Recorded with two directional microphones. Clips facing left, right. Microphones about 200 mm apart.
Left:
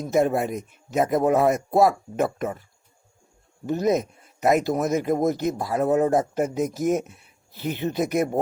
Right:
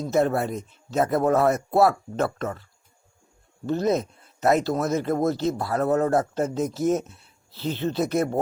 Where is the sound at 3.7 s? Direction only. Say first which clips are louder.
Left 1 dB; 15° left (ahead or behind).